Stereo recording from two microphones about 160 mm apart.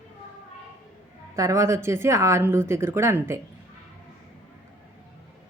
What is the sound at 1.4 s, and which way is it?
Speech, 20° right (ahead or behind).